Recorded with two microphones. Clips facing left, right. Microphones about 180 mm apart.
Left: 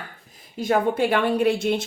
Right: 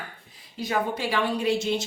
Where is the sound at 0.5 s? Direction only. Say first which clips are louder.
Left 7 dB; 50° left (ahead or behind).